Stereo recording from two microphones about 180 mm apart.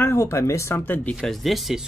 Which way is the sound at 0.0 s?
15° left (ahead or behind).